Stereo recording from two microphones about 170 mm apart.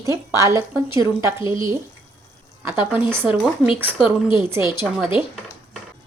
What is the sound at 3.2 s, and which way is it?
A woman's voice, centre (ahead or behind).